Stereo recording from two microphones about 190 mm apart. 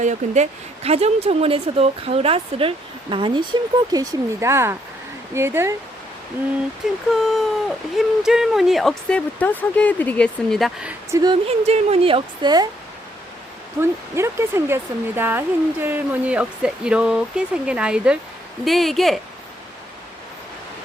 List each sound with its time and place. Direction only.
0.0 s speech: 40° right (ahead or behind); by 5.7 s 15° right (ahead or behind)
7.1 s speech: centre (ahead or behind)
11.1 s a woman's voice: 20° right (ahead or behind)
11.4 s a woman's voice: 30° right (ahead or behind)
14.2 s speech: 15° right (ahead or behind)